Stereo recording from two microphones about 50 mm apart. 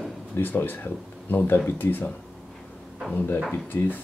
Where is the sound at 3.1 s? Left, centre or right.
Left.